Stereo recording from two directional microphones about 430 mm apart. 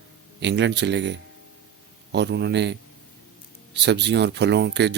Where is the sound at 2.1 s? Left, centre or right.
Right.